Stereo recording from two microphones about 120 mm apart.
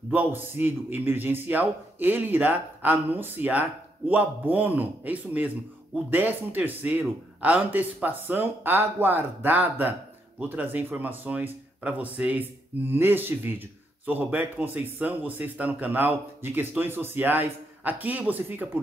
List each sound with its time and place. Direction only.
0.1 s speech: 15° right (ahead or behind)